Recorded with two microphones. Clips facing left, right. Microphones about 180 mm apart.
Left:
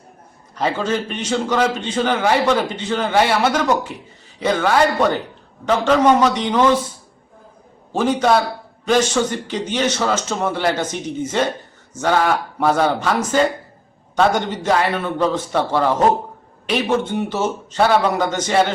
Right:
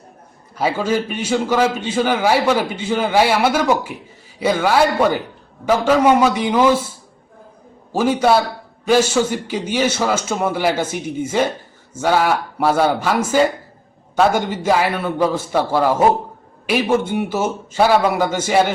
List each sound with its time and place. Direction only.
0.5 s a man's voice: 10° right (ahead or behind)
7.9 s a man's voice: 10° right (ahead or behind)